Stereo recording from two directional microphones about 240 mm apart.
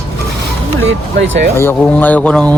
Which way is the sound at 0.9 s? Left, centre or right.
Right.